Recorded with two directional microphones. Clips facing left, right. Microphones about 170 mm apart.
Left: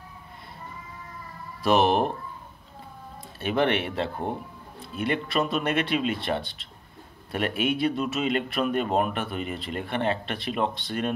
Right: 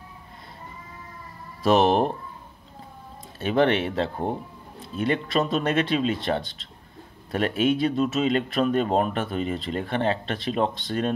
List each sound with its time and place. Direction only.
1.6 s speech: 40° right (ahead or behind)
3.3 s speech: 35° right (ahead or behind)
7.2 s speech: 35° right (ahead or behind)